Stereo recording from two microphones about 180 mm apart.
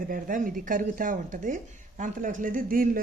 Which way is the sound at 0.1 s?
50° right (ahead or behind).